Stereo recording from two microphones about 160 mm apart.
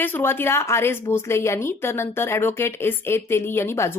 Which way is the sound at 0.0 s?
15° left (ahead or behind).